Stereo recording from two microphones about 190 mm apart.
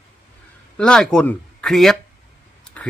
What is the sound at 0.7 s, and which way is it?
Speech, 5° left (ahead or behind).